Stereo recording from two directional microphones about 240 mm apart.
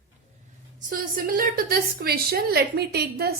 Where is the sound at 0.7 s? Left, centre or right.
Right.